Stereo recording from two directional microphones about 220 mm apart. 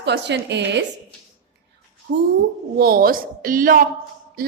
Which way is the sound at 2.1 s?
50° right (ahead or behind).